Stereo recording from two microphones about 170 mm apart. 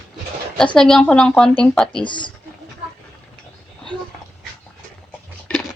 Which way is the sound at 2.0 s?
30° left (ahead or behind).